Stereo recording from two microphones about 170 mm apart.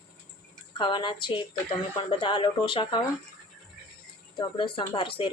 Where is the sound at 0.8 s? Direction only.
30° left (ahead or behind).